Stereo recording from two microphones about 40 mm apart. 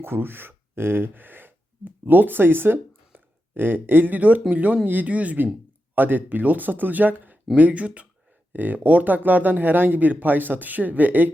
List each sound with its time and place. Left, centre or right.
0.0 s speech: right
5.9 s speech: right
7.5 s speech: right
8.5 s speech: right